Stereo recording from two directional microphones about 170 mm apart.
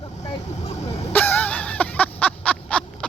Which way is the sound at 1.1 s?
10° left (ahead or behind).